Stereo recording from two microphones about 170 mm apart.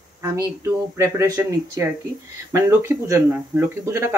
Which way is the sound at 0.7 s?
15° right (ahead or behind).